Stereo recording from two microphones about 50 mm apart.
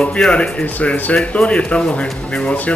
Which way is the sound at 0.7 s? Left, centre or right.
Left.